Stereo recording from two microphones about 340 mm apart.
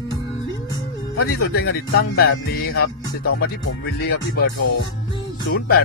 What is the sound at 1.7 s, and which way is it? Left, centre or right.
Music, left.